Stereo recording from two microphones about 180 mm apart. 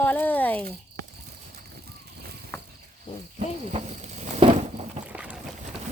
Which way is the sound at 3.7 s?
40° right (ahead or behind).